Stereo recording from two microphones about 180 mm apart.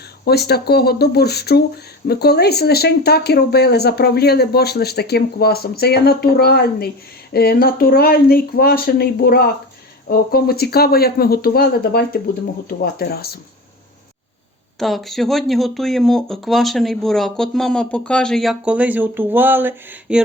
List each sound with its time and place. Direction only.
0.3 s speech: 65° left (ahead or behind)
14.8 s speech: centre (ahead or behind)